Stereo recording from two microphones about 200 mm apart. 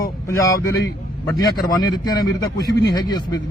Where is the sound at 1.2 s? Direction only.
20° left (ahead or behind).